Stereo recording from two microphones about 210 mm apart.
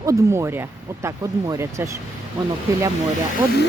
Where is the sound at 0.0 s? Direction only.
15° right (ahead or behind).